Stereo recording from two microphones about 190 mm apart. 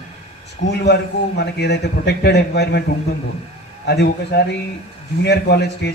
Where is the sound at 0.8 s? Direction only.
60° left (ahead or behind).